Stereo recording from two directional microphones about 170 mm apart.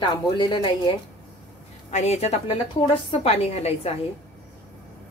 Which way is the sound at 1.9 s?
40° left (ahead or behind).